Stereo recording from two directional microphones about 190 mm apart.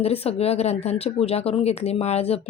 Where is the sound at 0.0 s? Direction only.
30° left (ahead or behind).